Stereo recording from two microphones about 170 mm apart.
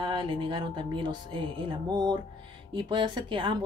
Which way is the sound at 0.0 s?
30° right (ahead or behind).